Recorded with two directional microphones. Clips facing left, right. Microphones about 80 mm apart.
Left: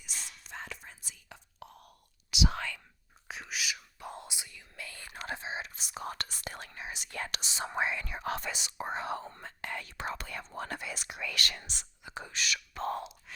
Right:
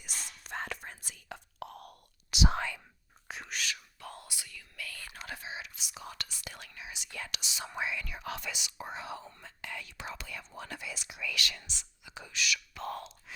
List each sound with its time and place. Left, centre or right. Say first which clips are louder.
0.0 s whispering: right 1 dB; right
2.3 s whispering: right 1 dB; right
2.6 s whispering: right 2 dB; centre
3.2 s whispering: even; centre
4.0 s whispering: left 4 dB; left
12.9 s gasp: left 3 dB; centre